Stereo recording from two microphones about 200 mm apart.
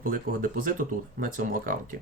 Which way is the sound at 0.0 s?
45° right (ahead or behind).